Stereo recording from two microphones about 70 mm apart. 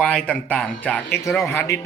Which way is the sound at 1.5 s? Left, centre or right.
Left.